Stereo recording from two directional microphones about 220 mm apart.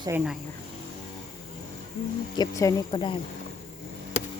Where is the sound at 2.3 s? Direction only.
15° left (ahead or behind).